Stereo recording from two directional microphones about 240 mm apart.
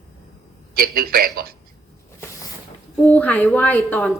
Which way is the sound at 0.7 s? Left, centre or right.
Right.